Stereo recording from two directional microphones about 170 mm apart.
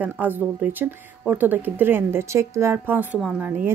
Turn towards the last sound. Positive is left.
turn(degrees=-10)  # may be behind; listen again after turning